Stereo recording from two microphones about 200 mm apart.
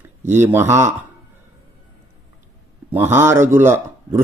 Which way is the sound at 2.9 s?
10° right (ahead or behind).